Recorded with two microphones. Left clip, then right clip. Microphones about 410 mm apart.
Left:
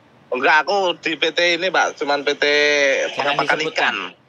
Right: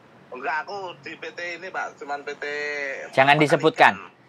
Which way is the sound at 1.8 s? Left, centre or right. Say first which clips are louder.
Left 12 dB; left.